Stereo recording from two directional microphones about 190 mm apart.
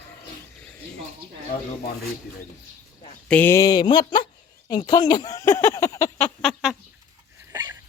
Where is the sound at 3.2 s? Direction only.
10° left (ahead or behind).